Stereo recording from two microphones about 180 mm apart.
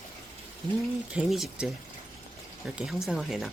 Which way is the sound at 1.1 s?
5° right (ahead or behind).